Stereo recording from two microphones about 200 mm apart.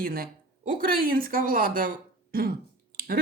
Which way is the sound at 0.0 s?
45° right (ahead or behind).